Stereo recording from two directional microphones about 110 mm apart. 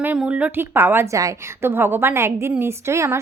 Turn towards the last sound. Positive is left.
turn(degrees=-25)  # may be behind; listen again after turning